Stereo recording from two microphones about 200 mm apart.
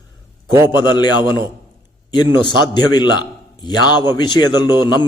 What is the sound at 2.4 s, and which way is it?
A man's voice, 20° left (ahead or behind).